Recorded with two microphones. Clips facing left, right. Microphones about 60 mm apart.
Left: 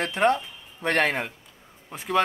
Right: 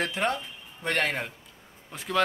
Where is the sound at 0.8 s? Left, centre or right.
Left.